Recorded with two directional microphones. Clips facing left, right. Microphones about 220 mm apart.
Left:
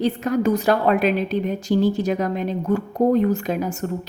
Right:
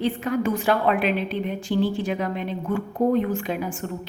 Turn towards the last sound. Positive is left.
turn(degrees=40)  # may be behind; listen again after turning